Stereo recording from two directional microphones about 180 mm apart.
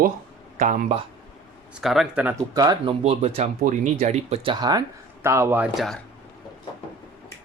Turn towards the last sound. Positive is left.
turn(degrees=-10)  # may be behind; listen again after turning